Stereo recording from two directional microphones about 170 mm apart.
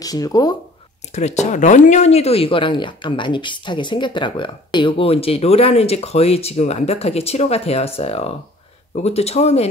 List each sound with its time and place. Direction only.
0.0 s speech: 20° left (ahead or behind)
1.1 s speech: 40° left (ahead or behind)